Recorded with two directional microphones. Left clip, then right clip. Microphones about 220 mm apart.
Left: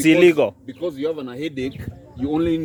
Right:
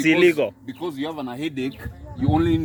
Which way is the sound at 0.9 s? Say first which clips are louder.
Left 4 dB; 30° right (ahead or behind).